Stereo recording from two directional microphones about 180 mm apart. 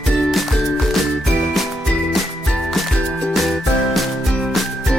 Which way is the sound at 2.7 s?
Centre (ahead or behind).